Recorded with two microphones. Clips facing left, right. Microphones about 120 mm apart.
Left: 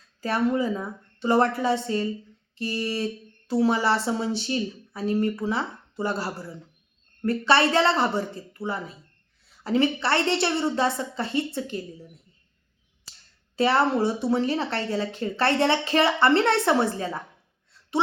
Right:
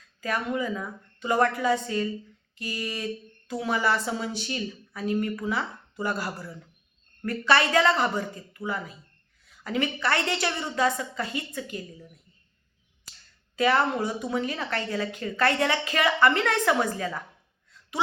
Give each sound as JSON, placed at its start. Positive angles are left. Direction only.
{"t": 0.2, "sound": "a woman's voice", "side_deg": 30}
{"t": 13.6, "sound": "speech", "side_deg": 30}